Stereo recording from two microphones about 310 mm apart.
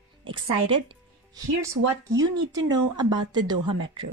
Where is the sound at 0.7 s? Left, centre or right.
Centre.